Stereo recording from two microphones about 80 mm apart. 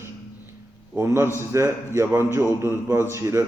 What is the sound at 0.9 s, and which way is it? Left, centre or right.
A man's voice, right.